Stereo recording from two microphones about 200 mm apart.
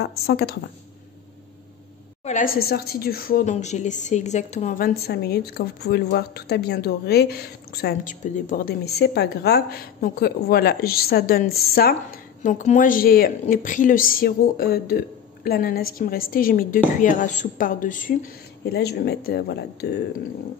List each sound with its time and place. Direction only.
0.0 s a woman's voice: 55° left (ahead or behind)
2.2 s a woman's voice: 40° left (ahead or behind)
2.6 s a woman's voice: 50° left (ahead or behind)
18.7 s a woman's voice: 55° left (ahead or behind)